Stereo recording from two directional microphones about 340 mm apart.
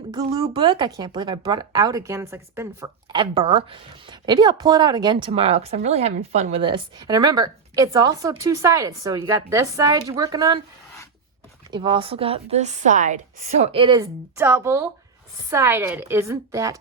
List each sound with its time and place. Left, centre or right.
0.1 s speech: centre
11.7 s speech: centre